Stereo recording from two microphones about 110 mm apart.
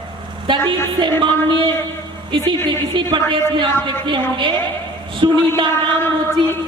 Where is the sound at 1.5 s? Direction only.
50° right (ahead or behind).